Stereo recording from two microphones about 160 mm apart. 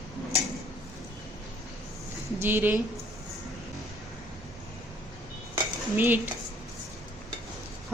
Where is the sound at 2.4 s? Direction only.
10° right (ahead or behind).